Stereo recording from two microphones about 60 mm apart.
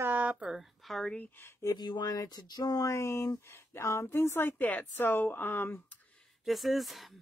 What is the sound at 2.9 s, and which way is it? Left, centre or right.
Speech, left.